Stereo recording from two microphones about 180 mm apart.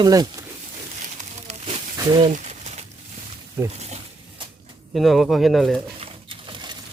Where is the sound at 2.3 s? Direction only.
40° right (ahead or behind).